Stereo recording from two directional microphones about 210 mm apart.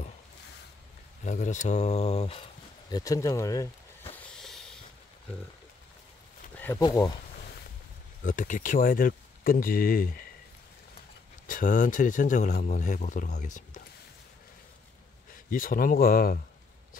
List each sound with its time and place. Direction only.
1.2 s a man's voice: 35° left (ahead or behind)
2.9 s speech: 15° left (ahead or behind)
4.1 s a sound: 5° left (ahead or behind)
6.6 s speech: 15° left (ahead or behind)
8.2 s speech: 40° left (ahead or behind)
11.4 s a man's voice: 40° left (ahead or behind)
15.5 s speech: 40° left (ahead or behind)